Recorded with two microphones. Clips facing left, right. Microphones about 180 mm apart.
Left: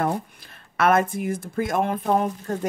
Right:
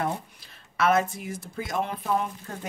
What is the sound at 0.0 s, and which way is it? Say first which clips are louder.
Speech: left 5 dB; 55° left (ahead or behind).